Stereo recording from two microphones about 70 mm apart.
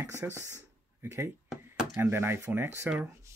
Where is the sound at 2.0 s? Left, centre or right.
Right.